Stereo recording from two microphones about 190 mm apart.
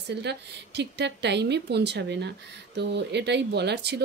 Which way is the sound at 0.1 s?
60° right (ahead or behind).